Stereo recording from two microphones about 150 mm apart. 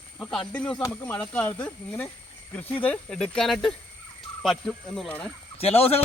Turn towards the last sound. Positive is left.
turn(degrees=40)  # may be behind; listen again after turning